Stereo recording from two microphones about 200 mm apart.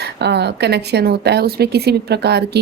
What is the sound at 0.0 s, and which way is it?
A woman's voice, 55° right (ahead or behind).